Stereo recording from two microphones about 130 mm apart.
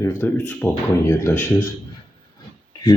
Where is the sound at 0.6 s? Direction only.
Centre (ahead or behind).